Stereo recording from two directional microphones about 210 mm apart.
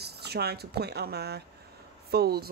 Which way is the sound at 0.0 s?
50° right (ahead or behind).